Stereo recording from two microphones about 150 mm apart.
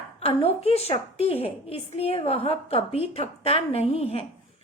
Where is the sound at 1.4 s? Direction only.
40° left (ahead or behind).